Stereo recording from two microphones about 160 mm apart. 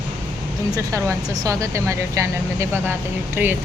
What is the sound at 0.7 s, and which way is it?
Speech, 20° right (ahead or behind).